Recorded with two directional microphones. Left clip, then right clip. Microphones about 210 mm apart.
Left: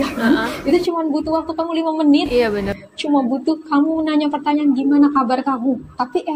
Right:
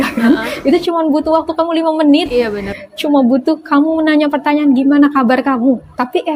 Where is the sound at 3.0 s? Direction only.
50° right (ahead or behind).